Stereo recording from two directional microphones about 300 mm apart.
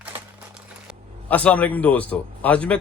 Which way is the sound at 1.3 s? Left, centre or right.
Centre.